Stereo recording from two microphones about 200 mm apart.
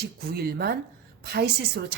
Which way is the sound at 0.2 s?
50° right (ahead or behind).